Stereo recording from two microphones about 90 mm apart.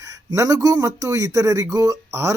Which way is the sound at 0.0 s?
40° right (ahead or behind).